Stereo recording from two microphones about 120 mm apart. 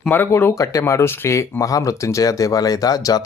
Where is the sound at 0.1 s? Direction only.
20° left (ahead or behind).